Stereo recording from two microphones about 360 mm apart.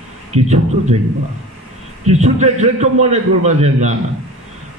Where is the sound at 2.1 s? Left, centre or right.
Centre.